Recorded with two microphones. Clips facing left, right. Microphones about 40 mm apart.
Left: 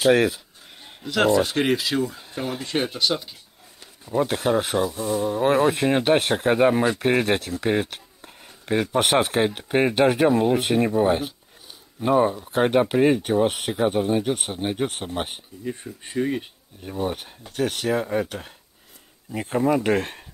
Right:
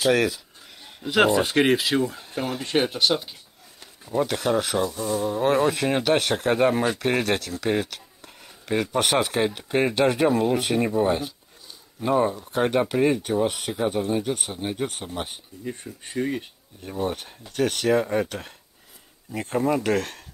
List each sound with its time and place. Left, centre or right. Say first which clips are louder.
0.0 s speech: left 3 dB; centre
1.0 s speech: even; centre
2.6 s speech: right 3 dB; centre
4.1 s speech: left 1 dB; centre
6.3 s speech: left 2 dB; centre; by 15.4 s left
15.6 s speech: left 2 dB; centre
19.3 s speech: left 2 dB; centre
19.8 s speech: left 2 dB; left